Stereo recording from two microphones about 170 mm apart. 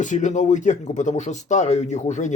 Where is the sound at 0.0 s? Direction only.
45° left (ahead or behind).